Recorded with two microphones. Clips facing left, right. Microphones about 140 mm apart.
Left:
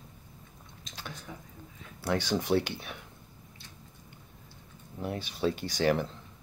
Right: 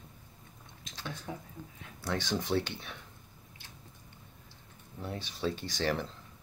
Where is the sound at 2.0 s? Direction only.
5° left (ahead or behind).